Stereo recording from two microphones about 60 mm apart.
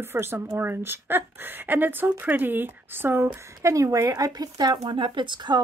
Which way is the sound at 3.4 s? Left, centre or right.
Right.